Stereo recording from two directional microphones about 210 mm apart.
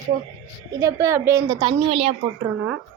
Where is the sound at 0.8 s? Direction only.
15° right (ahead or behind).